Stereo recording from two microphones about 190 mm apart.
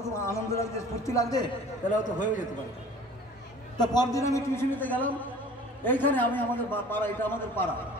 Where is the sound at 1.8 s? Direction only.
40° left (ahead or behind).